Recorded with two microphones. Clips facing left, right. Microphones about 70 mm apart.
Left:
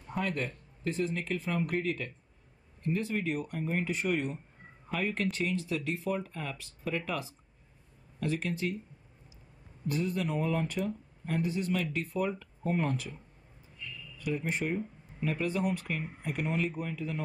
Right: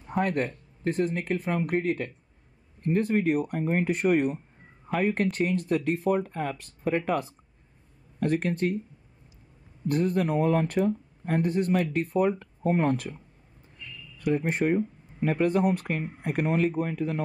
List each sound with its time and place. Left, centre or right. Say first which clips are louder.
0.1 s speech: right 7 dB; right
9.8 s speech: right 7 dB; right
14.1 s speech: right 7 dB; right